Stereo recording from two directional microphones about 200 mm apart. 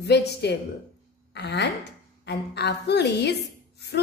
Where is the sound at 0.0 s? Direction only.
55° left (ahead or behind).